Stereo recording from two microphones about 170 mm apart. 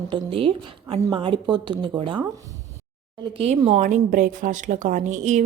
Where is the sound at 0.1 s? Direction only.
30° right (ahead or behind).